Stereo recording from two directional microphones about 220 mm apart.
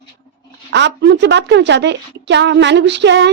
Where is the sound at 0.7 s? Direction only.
50° right (ahead or behind).